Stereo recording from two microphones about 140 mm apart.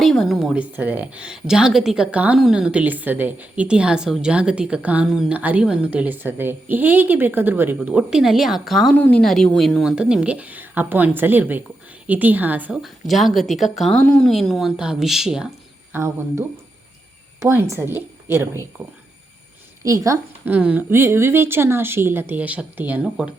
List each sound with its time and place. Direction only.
0.0 s a woman's voice: centre (ahead or behind)
9.0 s a woman's voice: 10° left (ahead or behind)
15.9 s speech: 20° right (ahead or behind)
17.4 s a woman's voice: 20° right (ahead or behind)
20.5 s a woman's voice: 10° right (ahead or behind)